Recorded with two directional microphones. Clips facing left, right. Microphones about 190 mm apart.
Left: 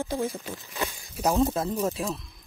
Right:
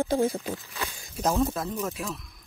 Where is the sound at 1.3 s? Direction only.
25° left (ahead or behind).